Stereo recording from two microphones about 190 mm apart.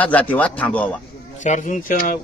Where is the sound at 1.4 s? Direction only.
40° left (ahead or behind).